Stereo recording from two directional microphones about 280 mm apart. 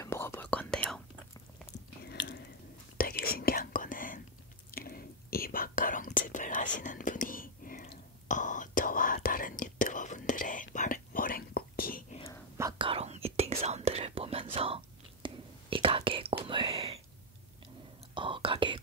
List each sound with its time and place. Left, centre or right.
0.0 s whispering: centre
2.0 s biting: left
3.0 s whispering: left
12.5 s whispering: centre
18.1 s whispering: centre